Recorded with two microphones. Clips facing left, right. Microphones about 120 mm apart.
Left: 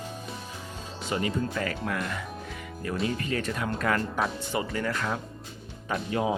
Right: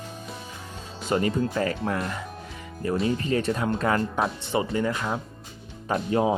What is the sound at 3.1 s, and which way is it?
Speech, 30° right (ahead or behind).